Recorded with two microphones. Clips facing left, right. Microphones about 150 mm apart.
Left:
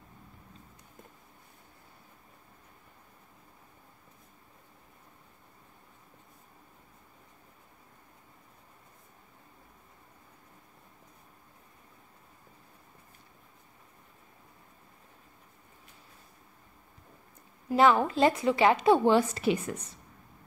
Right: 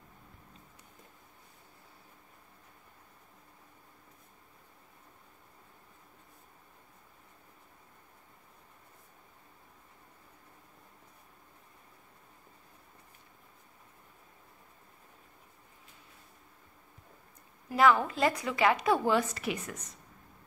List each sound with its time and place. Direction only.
17.6 s a woman's voice: 25° left (ahead or behind)